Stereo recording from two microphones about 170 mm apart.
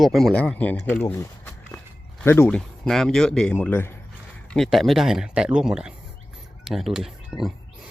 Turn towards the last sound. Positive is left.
turn(degrees=5)  # may be behind; listen again after turning